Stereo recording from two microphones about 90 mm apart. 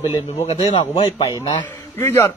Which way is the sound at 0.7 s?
90° left.